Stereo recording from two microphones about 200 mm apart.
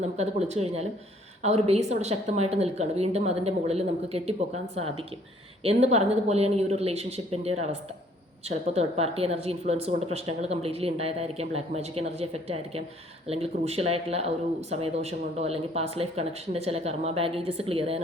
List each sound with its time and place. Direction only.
0.0 s speech: 35° right (ahead or behind)